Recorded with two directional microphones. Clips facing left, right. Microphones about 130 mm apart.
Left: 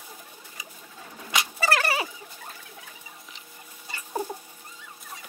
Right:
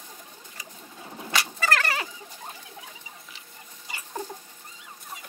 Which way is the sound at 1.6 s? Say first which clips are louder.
Left 4 dB; 15° left (ahead or behind).